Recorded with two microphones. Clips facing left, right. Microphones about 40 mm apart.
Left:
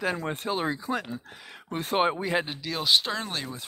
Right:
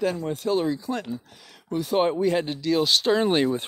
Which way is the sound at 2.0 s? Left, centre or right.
Centre.